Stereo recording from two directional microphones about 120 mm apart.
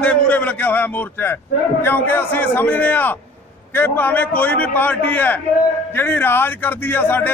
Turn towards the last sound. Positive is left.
turn(degrees=15)  # may be behind; listen again after turning